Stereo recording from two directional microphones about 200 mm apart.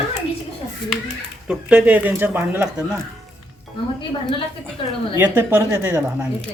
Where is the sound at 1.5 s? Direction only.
5° right (ahead or behind).